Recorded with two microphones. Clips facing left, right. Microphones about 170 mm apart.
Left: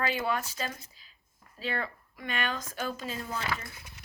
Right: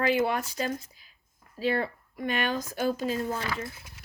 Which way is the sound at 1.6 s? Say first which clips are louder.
Right 7 dB; 40° right (ahead or behind).